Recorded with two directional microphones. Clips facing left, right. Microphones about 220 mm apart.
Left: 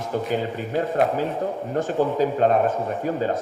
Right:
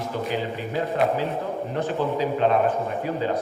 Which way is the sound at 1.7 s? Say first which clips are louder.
Left 4 dB; 45° left (ahead or behind).